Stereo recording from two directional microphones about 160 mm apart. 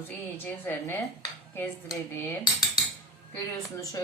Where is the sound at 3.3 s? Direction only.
20° left (ahead or behind).